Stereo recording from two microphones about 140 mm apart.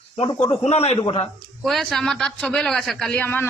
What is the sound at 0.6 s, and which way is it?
Speech, 50° left (ahead or behind).